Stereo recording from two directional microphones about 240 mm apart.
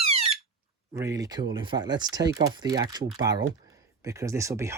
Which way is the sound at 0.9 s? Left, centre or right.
Centre.